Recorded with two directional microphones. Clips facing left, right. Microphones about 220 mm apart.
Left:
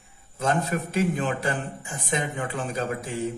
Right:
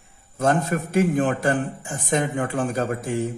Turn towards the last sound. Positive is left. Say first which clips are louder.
# right 5 dB
turn(degrees=-50)  # may be behind; listen again after turning